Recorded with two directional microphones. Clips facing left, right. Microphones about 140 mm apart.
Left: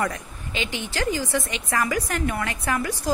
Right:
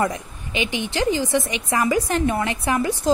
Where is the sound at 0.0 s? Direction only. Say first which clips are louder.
Right 4 dB; 20° right (ahead or behind).